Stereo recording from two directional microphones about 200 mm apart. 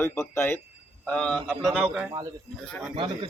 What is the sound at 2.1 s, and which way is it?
Speech, 20° right (ahead or behind).